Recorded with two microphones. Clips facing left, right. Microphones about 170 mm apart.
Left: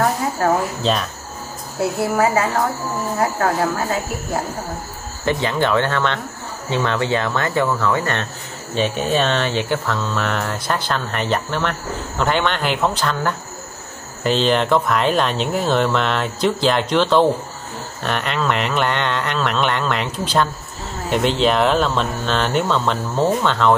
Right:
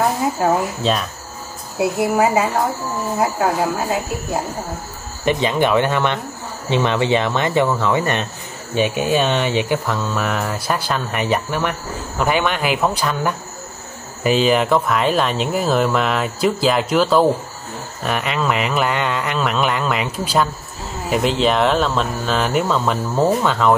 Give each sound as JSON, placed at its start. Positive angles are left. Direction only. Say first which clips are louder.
{"t": 0.0, "sound": "speech", "louder": "right 1 dB", "side_deg": -5}
{"t": 5.2, "sound": "speech", "louder": "right 2 dB", "side_deg": -20}